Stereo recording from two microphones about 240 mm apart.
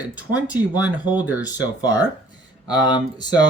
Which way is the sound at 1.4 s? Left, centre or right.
Centre.